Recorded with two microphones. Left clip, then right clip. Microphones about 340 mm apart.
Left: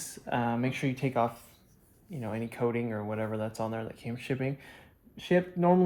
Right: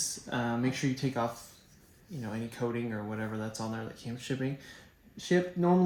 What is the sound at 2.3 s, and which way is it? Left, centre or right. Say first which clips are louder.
Speech: left 4 dB; centre.